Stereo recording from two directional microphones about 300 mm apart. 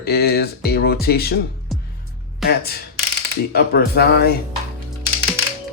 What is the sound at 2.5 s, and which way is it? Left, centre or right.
Speech, left.